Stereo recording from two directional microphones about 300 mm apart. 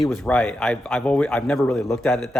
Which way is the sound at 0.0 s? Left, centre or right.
Centre.